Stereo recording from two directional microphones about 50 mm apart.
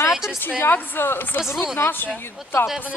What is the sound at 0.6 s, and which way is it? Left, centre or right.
Speech, left.